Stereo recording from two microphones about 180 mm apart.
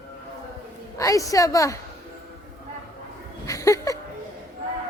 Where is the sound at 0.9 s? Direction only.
20° left (ahead or behind).